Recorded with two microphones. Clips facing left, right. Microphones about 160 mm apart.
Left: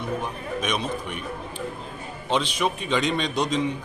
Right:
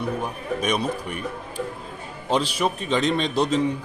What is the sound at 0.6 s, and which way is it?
Speech, 35° right (ahead or behind).